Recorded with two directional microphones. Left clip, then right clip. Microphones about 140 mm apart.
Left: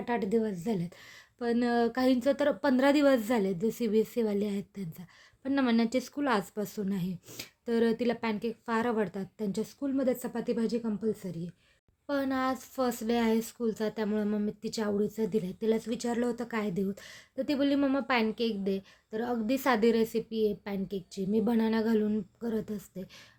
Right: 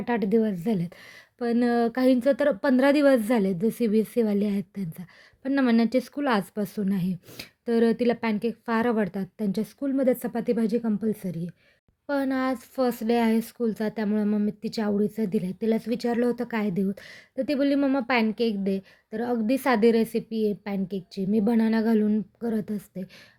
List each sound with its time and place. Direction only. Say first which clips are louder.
0.0 s speech: right 5 dB; 40° right (ahead or behind)